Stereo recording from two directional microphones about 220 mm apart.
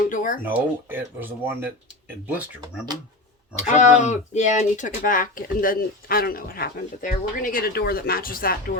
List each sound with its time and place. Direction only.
0.1 s speech: 35° left (ahead or behind)
0.4 s speech: 10° right (ahead or behind)
3.5 s speech: 35° left (ahead or behind)